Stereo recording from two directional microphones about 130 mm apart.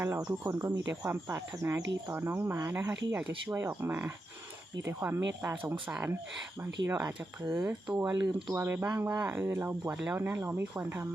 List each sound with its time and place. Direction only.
0.0 s speech: 20° right (ahead or behind)